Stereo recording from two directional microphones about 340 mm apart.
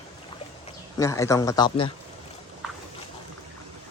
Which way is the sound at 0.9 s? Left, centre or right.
Centre.